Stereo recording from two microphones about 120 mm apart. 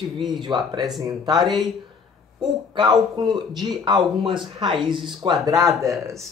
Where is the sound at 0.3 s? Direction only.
40° right (ahead or behind).